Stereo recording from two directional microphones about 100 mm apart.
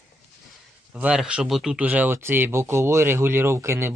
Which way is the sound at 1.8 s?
15° right (ahead or behind).